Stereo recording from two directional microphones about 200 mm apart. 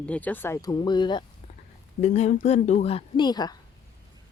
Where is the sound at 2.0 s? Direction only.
35° left (ahead or behind).